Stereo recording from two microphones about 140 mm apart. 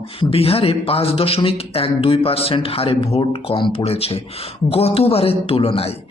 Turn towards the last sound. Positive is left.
turn(degrees=45)  # may be behind; listen again after turning